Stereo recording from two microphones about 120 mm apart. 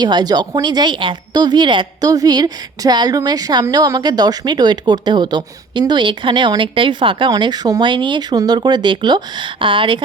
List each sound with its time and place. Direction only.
0.0 s a woman's voice: 35° right (ahead or behind)